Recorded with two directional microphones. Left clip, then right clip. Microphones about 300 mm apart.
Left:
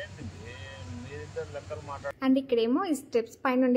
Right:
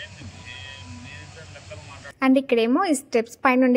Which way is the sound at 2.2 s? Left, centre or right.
Right.